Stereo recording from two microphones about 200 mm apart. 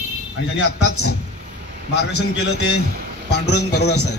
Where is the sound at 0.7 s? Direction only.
90° left.